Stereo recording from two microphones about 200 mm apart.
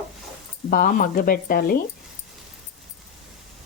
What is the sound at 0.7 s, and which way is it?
A woman's voice, 45° left (ahead or behind).